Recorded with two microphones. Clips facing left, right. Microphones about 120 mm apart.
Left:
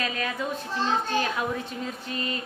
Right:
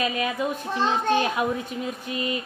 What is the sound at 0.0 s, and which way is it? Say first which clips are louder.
A woman's voice: right 4 dB; 15° right (ahead or behind).